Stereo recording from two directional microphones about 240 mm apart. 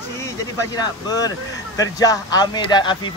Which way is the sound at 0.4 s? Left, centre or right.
Centre.